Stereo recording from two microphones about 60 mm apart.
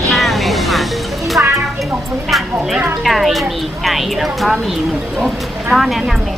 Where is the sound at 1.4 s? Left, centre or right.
Right.